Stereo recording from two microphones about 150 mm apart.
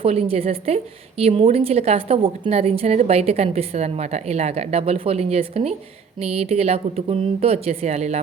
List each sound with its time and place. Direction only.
0.0 s a woman's voice: 40° right (ahead or behind)